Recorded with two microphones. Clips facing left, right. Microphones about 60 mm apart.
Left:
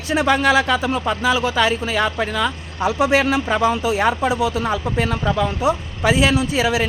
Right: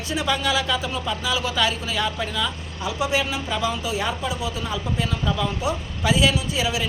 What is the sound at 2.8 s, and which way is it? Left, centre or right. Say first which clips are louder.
Speech: left 7 dB; left.